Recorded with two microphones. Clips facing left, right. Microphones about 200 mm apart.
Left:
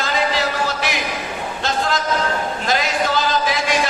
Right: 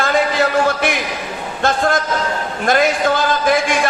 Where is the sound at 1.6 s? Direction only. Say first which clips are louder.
Right 5 dB; 50° right (ahead or behind).